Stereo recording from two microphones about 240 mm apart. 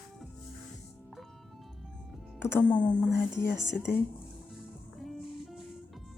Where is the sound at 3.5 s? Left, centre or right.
Left.